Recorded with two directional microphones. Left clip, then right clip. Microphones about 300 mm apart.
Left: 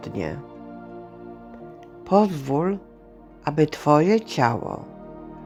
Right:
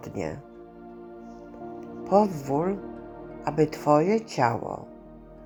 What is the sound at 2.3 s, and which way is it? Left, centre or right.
Speech, centre.